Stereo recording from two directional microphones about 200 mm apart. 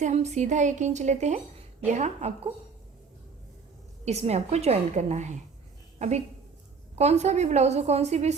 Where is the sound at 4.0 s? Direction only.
35° right (ahead or behind).